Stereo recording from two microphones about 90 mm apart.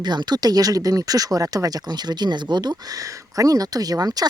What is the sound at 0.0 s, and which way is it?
Speech, 55° right (ahead or behind).